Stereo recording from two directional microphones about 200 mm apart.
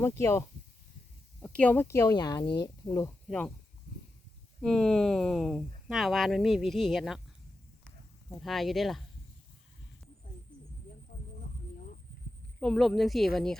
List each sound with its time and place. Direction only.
0.0 s speech: 15° left (ahead or behind)
4.6 s speech: centre (ahead or behind)
8.4 s speech: centre (ahead or behind)
12.5 s speech: 5° left (ahead or behind)